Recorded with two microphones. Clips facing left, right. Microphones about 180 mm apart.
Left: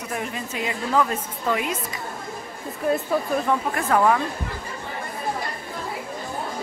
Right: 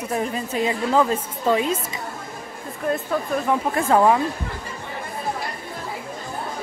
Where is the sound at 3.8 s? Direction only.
25° right (ahead or behind).